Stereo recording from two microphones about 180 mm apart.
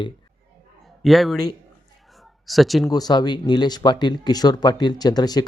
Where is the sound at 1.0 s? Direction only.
Centre (ahead or behind).